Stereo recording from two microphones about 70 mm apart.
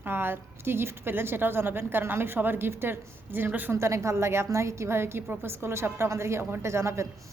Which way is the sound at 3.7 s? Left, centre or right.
Right.